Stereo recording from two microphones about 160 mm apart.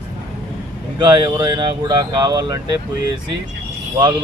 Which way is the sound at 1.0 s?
25° right (ahead or behind).